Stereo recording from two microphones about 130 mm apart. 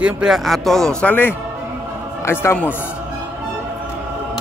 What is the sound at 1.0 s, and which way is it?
A man's voice, 15° left (ahead or behind).